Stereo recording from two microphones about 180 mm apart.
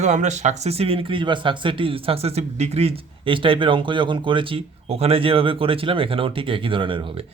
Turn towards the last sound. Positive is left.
turn(degrees=-30)  # may be behind; listen again after turning